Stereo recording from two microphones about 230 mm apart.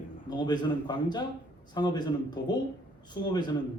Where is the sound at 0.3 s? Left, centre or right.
Centre.